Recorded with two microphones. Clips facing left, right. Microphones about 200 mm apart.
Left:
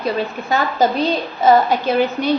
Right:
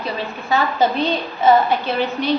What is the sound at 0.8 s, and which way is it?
Speech, 40° left (ahead or behind).